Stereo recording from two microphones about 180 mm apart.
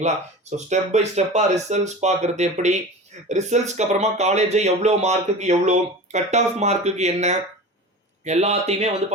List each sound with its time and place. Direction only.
0.5 s speech: 40° right (ahead or behind)